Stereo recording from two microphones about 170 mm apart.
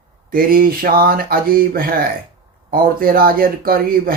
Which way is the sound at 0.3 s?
60° right (ahead or behind).